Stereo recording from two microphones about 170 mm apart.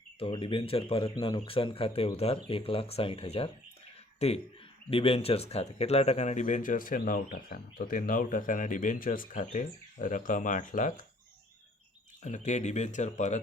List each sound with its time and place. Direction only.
0.2 s speech: 30° left (ahead or behind); by 11.0 s 50° left (ahead or behind)
12.2 s speech: 45° left (ahead or behind)